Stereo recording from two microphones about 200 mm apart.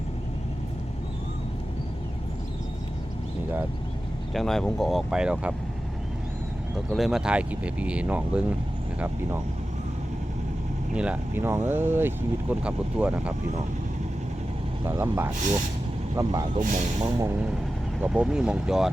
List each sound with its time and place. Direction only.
4.4 s speech: centre (ahead or behind)
6.9 s speech: centre (ahead or behind)
10.9 s speech: 5° right (ahead or behind)
14.8 s speech: 10° right (ahead or behind)
16.6 s speech: 40° right (ahead or behind)
17.0 s speech: 15° right (ahead or behind)
18.0 s speech: 5° right (ahead or behind)